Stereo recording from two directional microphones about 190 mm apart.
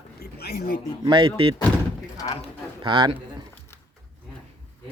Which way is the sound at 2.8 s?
25° right (ahead or behind).